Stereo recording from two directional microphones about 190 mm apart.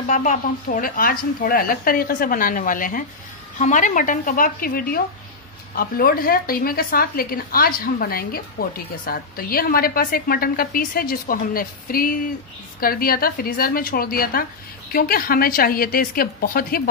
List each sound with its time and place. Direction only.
0.1 s speech: 40° left (ahead or behind)